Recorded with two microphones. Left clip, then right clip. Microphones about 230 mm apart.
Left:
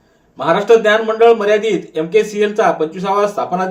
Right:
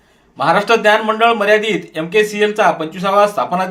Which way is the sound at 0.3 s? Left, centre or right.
Right.